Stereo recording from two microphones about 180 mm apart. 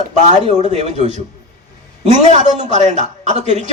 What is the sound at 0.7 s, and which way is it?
Speech, 40° right (ahead or behind).